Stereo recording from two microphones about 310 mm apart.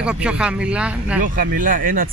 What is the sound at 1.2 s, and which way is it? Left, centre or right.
Speech, right.